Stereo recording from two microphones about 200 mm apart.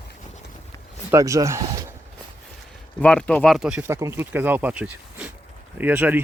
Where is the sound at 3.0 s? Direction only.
5° left (ahead or behind).